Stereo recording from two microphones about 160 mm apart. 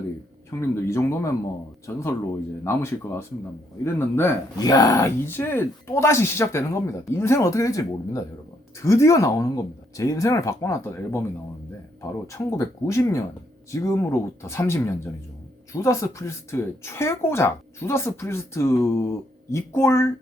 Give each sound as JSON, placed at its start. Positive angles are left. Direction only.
{"t": 0.6, "sound": "speech", "side_deg": 15}
{"t": 12.3, "sound": "speech", "side_deg": 20}